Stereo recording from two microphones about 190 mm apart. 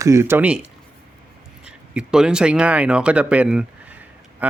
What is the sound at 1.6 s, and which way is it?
Speech, 5° right (ahead or behind).